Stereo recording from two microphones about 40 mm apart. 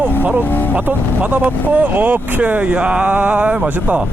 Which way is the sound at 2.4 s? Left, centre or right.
Right.